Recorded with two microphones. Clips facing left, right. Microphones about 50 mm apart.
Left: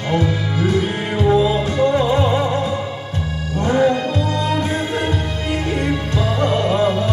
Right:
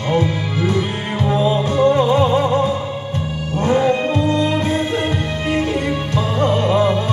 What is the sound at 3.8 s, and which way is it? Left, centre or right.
Music, right.